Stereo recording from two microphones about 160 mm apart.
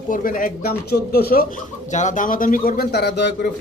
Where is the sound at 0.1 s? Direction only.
60° left (ahead or behind); by 3.3 s 90° left.